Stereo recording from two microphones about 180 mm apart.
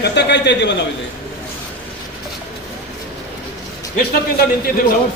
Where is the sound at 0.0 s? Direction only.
70° left (ahead or behind).